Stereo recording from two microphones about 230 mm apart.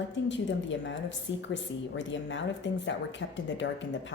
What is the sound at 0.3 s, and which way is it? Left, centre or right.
A woman's voice, left.